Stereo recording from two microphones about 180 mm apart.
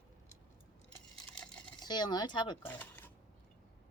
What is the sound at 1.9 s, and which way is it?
Speech, 25° left (ahead or behind).